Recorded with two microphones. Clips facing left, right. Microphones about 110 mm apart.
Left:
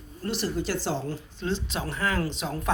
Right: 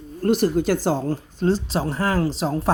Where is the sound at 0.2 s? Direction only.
50° right (ahead or behind).